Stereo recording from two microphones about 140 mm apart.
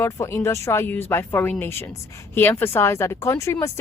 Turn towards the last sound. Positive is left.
turn(degrees=20)  # may be behind; listen again after turning